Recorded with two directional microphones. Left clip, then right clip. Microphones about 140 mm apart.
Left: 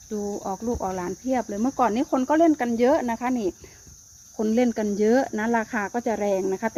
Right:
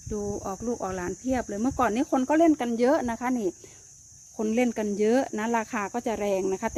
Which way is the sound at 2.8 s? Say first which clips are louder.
Left 3 dB; 20° right (ahead or behind).